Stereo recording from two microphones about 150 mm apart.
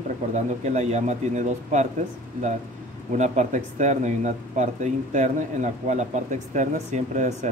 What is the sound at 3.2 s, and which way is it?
Speech, 55° right (ahead or behind).